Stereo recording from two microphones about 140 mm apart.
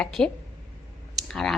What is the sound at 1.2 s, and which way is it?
Clicking, 5° left (ahead or behind).